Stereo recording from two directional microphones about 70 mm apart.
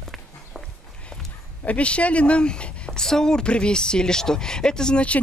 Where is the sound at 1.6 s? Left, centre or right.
Centre.